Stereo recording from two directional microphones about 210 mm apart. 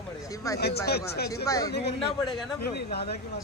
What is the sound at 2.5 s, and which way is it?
Speech, 50° left (ahead or behind).